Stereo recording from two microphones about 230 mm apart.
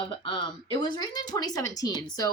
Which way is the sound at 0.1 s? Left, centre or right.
Left.